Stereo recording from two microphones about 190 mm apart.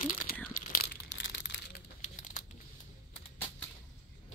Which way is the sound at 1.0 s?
70° left (ahead or behind).